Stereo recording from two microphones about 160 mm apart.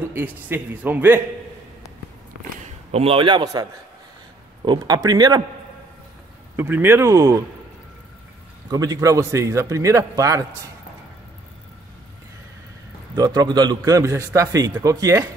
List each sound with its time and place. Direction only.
0.1 s a man's voice: 10° right (ahead or behind)
2.9 s a man's voice: 35° right (ahead or behind)
4.6 s a man's voice: 25° right (ahead or behind)
6.5 s a man's voice: 10° right (ahead or behind)
8.6 s a man's voice: 25° right (ahead or behind)
13.1 s a man's voice: 25° right (ahead or behind)